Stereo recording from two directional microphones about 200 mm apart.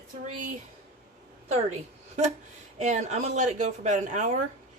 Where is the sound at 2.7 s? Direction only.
35° right (ahead or behind).